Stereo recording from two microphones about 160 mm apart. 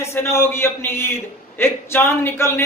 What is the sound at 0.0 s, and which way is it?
A man's voice, 15° left (ahead or behind).